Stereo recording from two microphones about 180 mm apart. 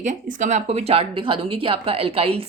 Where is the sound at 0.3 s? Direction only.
40° right (ahead or behind).